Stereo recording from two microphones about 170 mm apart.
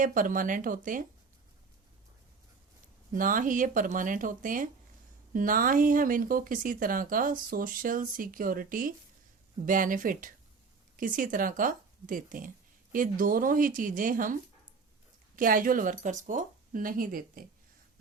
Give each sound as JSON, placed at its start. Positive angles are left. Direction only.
{"t": 0.0, "sound": "speech", "side_deg": -50}
{"t": 3.1, "sound": "speech", "side_deg": -55}
{"t": 15.4, "sound": "speech", "side_deg": -55}